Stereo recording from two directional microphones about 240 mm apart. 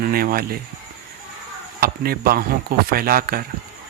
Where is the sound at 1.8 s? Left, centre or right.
Right.